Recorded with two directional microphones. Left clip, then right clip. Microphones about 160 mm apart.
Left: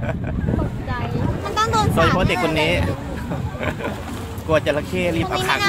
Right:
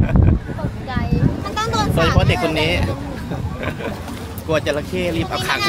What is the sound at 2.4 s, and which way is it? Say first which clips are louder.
Speech: even; 5° left (ahead or behind).